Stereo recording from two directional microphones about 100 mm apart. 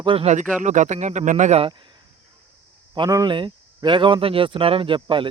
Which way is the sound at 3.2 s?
50° right (ahead or behind).